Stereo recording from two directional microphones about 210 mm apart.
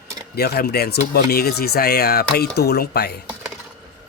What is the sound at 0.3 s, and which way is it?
Speech, 50° left (ahead or behind).